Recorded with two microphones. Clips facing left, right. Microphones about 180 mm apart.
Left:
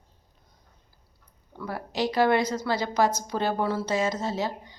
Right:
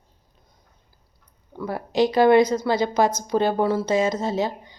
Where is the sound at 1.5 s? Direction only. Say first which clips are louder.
Right 8 dB; 20° right (ahead or behind).